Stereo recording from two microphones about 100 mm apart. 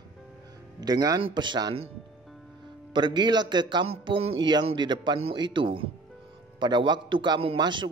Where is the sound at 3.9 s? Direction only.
80° right.